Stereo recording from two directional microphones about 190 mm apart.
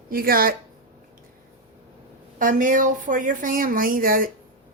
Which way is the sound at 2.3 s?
45° right (ahead or behind).